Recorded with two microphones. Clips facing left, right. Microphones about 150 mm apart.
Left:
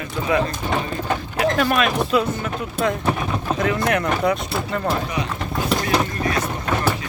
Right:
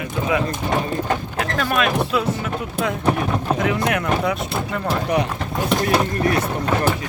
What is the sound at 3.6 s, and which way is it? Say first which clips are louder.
Speech: left 3 dB; 15° right (ahead or behind).